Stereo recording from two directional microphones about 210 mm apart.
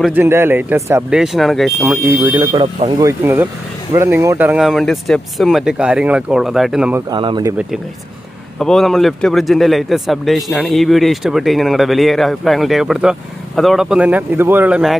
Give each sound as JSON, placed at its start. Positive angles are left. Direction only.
{"t": 0.0, "sound": "speech", "side_deg": -10}
{"t": 1.8, "sound": "speech", "side_deg": -10}
{"t": 3.1, "sound": "a man's voice", "side_deg": -15}
{"t": 7.1, "sound": "speech", "side_deg": -20}
{"t": 8.5, "sound": "a man's voice", "side_deg": 0}